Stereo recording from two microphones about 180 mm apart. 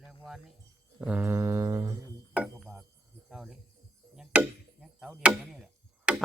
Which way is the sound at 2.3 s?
5° right (ahead or behind).